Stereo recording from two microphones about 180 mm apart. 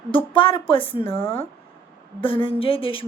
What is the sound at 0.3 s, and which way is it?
A woman's voice, 30° left (ahead or behind).